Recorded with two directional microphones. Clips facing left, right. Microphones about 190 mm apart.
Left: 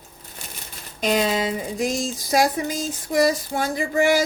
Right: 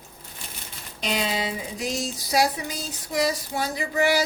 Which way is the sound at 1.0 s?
45° left (ahead or behind).